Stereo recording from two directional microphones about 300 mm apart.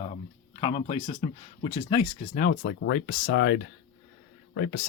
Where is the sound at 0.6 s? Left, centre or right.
Centre.